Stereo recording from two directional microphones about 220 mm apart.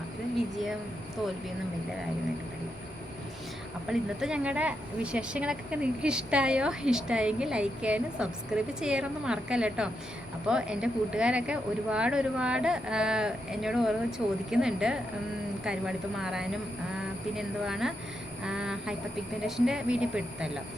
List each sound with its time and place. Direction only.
3.8 s speech: 5° right (ahead or behind)